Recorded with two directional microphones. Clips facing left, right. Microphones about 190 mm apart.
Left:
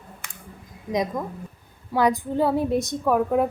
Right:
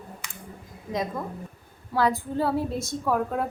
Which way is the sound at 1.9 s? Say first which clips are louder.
Left 3 dB; 20° left (ahead or behind).